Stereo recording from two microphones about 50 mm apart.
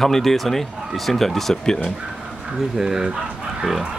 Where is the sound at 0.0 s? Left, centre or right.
Centre.